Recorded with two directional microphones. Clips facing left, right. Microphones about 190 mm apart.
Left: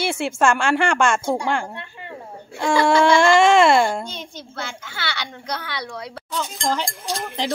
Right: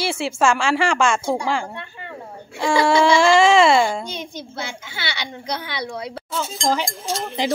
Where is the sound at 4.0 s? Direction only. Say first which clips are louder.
Right 3 dB; 10° right (ahead or behind).